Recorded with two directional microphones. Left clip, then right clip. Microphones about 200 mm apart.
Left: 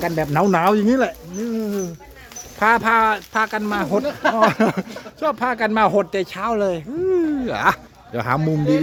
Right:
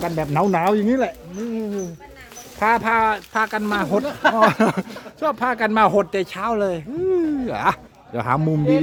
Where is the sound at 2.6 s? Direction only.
10° left (ahead or behind).